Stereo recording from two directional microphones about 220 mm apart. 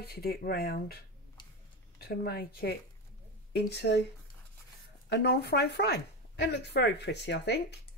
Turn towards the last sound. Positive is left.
turn(degrees=50)  # may be behind; listen again after turning